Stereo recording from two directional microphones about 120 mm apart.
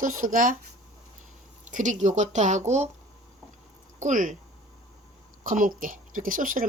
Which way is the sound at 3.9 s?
90° right.